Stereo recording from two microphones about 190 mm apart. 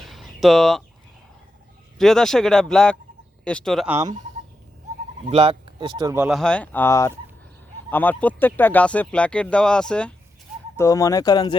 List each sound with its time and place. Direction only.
0.0 s a sound: centre (ahead or behind)
2.0 s speech: centre (ahead or behind)
4.0 s speech: 40° right (ahead or behind)
5.3 s speech: 30° right (ahead or behind)
6.2 s speech: centre (ahead or behind)
10.8 s speech: 15° left (ahead or behind)